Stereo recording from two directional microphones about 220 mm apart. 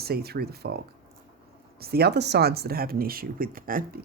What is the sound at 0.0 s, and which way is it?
Speech, 45° right (ahead or behind).